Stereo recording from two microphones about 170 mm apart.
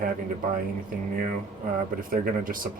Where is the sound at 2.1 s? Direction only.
55° right (ahead or behind).